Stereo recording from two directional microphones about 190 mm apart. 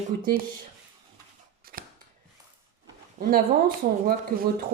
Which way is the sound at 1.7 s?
50° right (ahead or behind).